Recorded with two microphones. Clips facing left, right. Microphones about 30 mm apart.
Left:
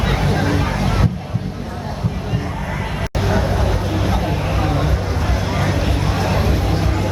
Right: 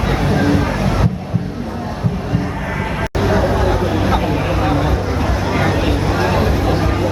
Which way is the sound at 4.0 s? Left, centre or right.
Right.